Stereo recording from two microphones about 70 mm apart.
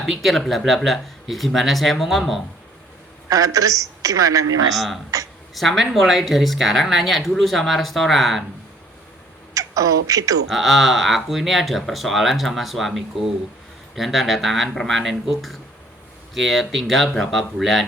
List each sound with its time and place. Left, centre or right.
0.0 s speech: centre
3.2 s a woman's voice: right
4.7 s speech: centre
9.6 s a woman's voice: right
10.5 s speech: centre